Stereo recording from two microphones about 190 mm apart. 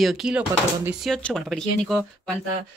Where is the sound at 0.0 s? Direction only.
Centre (ahead or behind).